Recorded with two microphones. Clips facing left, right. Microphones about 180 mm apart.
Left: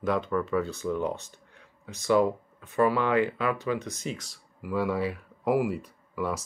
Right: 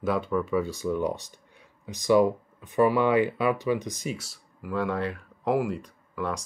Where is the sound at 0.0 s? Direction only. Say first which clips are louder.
Right 1 dB; 5° right (ahead or behind).